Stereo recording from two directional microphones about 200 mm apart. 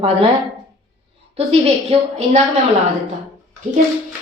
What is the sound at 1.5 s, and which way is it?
Speech, 30° right (ahead or behind).